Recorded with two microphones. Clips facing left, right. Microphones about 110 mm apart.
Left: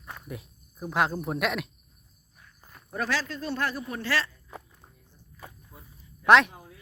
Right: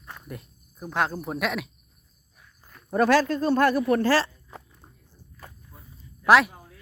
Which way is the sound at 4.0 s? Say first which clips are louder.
Right 8 dB; 35° right (ahead or behind).